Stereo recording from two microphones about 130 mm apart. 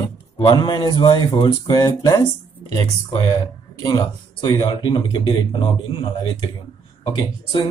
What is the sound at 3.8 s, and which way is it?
Speech, 35° left (ahead or behind).